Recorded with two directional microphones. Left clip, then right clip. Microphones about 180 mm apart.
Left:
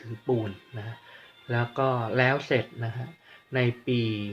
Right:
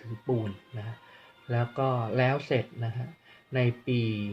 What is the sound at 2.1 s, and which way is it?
Speech, 5° right (ahead or behind).